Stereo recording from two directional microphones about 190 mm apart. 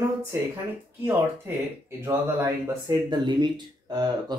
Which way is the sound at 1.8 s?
15° right (ahead or behind).